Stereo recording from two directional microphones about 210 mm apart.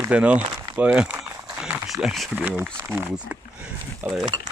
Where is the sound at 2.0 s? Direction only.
Centre (ahead or behind).